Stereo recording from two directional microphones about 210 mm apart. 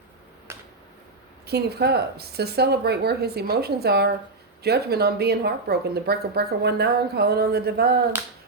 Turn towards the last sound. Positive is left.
turn(degrees=-50)  # may be behind; listen again after turning